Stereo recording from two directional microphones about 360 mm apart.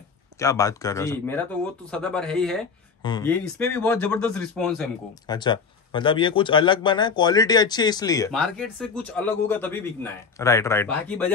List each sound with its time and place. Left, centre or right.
0.4 s a man's voice: centre